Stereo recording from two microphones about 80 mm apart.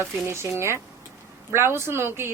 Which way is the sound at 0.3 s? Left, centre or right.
Right.